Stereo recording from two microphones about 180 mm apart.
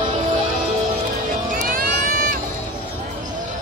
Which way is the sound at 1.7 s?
50° right (ahead or behind).